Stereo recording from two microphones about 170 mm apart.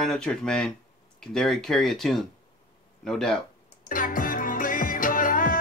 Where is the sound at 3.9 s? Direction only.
55° left (ahead or behind).